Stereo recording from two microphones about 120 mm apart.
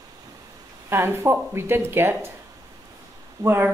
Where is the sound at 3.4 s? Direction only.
20° right (ahead or behind).